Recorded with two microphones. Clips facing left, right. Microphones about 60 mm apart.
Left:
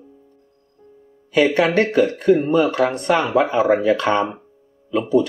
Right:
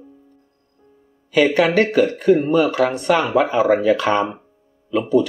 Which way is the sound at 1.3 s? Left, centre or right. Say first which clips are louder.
Right 1 dB; centre.